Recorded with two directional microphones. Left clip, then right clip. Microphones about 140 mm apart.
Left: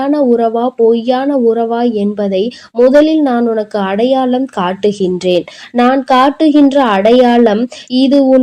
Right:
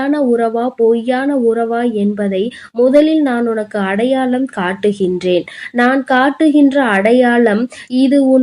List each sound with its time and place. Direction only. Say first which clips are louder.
0.3 s speech: left 3 dB; 25° left (ahead or behind)